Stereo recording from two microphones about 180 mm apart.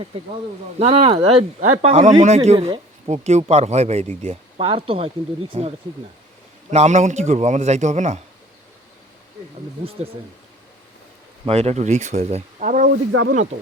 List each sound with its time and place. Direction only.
0.8 s speech: 35° right (ahead or behind)
11.4 s speech: 35° right (ahead or behind)